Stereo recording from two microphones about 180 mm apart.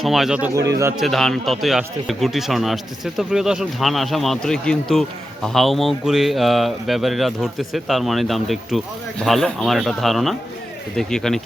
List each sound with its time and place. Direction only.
0.0 s speech: centre (ahead or behind)
0.7 s speech: 15° right (ahead or behind)
0.9 s speech: centre (ahead or behind)